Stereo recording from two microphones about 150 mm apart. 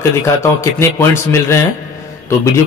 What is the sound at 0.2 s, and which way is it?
A man's voice, 20° left (ahead or behind).